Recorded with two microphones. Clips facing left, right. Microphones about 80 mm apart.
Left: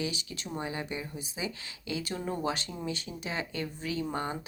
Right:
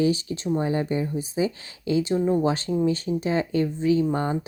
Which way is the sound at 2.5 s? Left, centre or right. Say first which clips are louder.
Right 11 dB; right.